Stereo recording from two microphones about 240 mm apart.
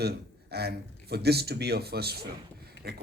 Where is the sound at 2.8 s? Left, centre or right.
Left.